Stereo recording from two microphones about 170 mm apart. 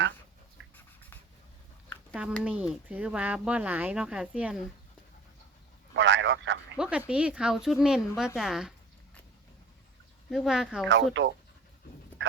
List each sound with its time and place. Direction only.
2.4 s speech: 5° right (ahead or behind)
5.9 s a sound: 90° right
6.7 s speech: 5° right (ahead or behind)
10.2 s speech: centre (ahead or behind)
10.8 s speech: 90° right
12.2 s a sound: 90° right